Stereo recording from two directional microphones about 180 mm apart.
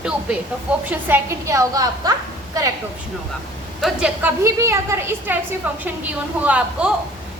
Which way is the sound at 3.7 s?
5° right (ahead or behind).